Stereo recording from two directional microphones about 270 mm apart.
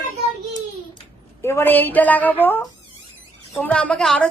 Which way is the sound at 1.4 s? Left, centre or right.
Centre.